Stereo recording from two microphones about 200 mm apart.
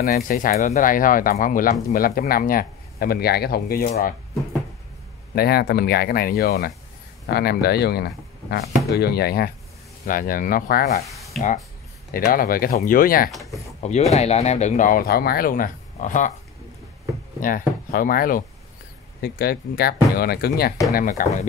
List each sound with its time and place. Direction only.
0.0 s speech: 45° left (ahead or behind)
5.3 s speech: 50° left (ahead or behind)
11.1 s a sound: centre (ahead or behind)
12.1 s speech: 45° left (ahead or behind)
14.1 s speech: 30° left (ahead or behind)
17.4 s speech: 45° left (ahead or behind)